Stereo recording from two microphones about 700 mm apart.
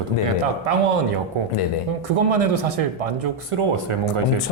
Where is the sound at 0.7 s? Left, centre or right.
Right.